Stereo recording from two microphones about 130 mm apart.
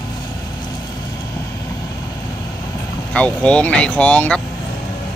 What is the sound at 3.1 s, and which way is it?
Speech, 10° left (ahead or behind).